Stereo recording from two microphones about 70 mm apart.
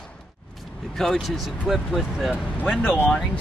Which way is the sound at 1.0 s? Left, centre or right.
Centre.